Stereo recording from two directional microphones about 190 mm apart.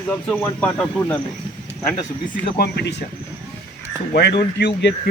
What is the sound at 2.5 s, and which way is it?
Speech, 60° left (ahead or behind).